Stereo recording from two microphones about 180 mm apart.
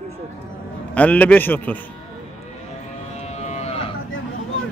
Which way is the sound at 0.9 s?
10° left (ahead or behind).